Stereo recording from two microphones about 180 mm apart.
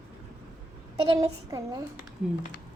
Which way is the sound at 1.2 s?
20° right (ahead or behind).